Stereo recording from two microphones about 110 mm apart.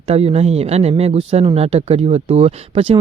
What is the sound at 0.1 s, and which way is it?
Speech, 65° right (ahead or behind).